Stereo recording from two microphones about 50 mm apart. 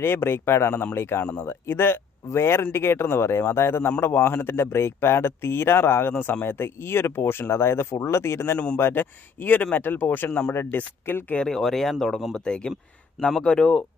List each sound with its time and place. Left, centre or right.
0.0 s speech: left
8.7 s speech: left
10.5 s speech: left
11.4 s speech: centre